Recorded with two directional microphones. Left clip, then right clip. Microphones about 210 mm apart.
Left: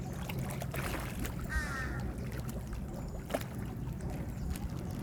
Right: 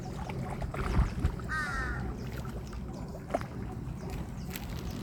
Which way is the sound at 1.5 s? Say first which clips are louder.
Right 5 dB; 15° left (ahead or behind).